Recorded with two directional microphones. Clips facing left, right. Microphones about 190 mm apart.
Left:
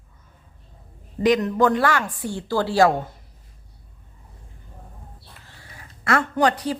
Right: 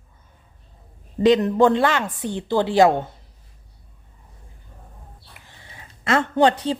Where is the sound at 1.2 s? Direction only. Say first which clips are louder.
Right 3 dB; 30° right (ahead or behind).